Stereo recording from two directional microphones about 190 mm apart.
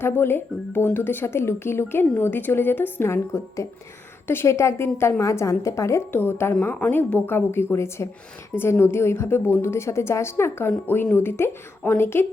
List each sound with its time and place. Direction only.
0.0 s a woman's voice: 10° left (ahead or behind)